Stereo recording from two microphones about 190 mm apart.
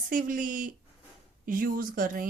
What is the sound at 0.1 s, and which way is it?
Speech, 45° right (ahead or behind).